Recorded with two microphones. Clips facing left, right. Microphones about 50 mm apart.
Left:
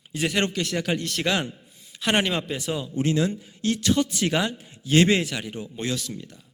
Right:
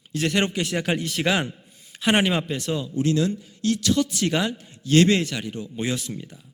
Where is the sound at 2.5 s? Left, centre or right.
Centre.